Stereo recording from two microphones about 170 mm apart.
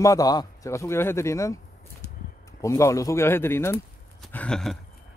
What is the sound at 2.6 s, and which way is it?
Speech, 15° left (ahead or behind).